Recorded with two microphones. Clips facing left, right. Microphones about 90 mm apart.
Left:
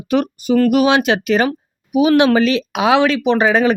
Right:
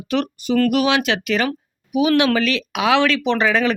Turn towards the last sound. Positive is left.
turn(degrees=20)  # may be behind; listen again after turning